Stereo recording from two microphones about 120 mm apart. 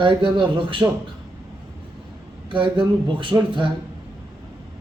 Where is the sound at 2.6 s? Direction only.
45° right (ahead or behind).